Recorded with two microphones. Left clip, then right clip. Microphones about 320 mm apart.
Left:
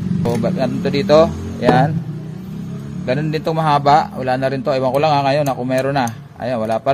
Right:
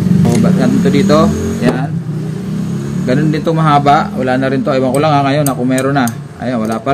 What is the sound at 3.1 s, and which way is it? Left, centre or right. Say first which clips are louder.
A man's voice: right 5 dB; left.